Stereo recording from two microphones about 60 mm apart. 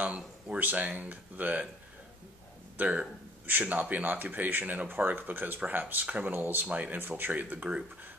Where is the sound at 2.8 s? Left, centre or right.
Right.